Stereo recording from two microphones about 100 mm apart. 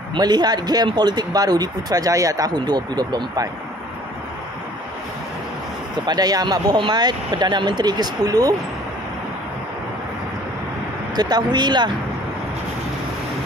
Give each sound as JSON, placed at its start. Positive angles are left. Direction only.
{"t": 0.1, "sound": "speech", "side_deg": -45}
{"t": 6.0, "sound": "speech", "side_deg": -40}
{"t": 11.1, "sound": "speech", "side_deg": -45}